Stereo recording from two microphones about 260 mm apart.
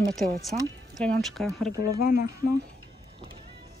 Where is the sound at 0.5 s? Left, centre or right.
Right.